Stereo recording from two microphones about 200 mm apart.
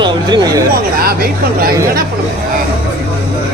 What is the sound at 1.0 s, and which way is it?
Speech, 50° right (ahead or behind).